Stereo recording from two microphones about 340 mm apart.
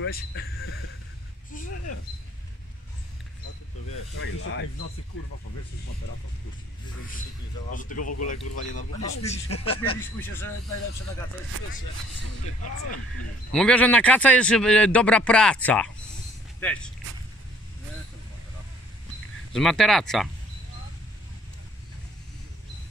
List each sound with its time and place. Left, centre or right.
0.0 s speech: left
3.9 s speech: left
7.7 s speech: left
8.0 s speech: left
9.2 s speech: centre
12.4 s speech: left
13.5 s a man's voice: centre
19.5 s a man's voice: centre